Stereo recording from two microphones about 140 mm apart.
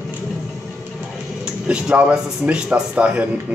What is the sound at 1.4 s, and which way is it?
Speech, 5° right (ahead or behind).